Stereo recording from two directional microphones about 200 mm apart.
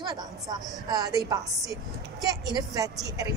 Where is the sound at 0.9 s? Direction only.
15° right (ahead or behind).